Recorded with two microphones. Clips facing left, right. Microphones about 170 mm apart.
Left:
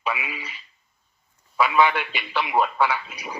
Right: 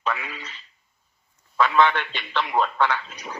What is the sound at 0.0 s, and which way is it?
A man's voice, 10° left (ahead or behind).